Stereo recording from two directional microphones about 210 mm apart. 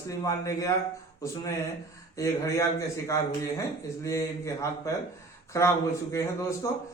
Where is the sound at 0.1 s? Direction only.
15° left (ahead or behind).